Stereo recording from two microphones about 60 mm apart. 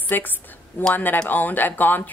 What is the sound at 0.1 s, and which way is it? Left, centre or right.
A woman's voice, left.